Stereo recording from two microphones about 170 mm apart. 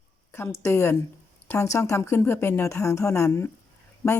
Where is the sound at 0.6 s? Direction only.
15° left (ahead or behind).